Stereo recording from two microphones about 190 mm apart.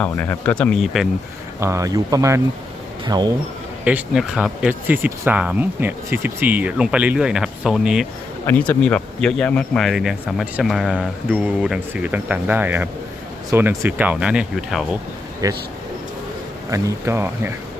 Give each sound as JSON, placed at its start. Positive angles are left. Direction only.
{"t": 0.0, "sound": "speech", "side_deg": 5}
{"t": 1.5, "sound": "speech", "side_deg": -15}
{"t": 3.8, "sound": "speech", "side_deg": -5}
{"t": 8.4, "sound": "speech", "side_deg": 10}
{"t": 15.4, "sound": "speech", "side_deg": -20}
{"t": 16.7, "sound": "speech", "side_deg": -15}